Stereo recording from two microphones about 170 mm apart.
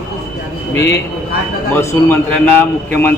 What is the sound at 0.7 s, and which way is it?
A man's voice, 15° left (ahead or behind).